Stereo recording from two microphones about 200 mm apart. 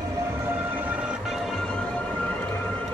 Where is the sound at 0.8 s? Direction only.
Centre (ahead or behind).